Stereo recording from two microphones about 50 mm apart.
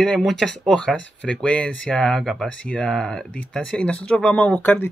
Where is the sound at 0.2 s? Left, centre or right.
Centre.